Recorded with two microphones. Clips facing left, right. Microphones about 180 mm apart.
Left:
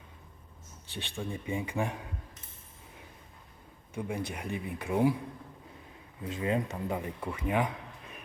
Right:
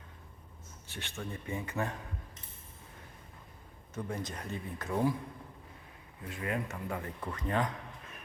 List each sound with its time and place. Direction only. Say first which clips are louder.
0.9 s speech: left 4 dB; 15° left (ahead or behind)
3.9 s speech: left 3 dB; 10° left (ahead or behind)
6.2 s speech: left 5 dB; 25° left (ahead or behind)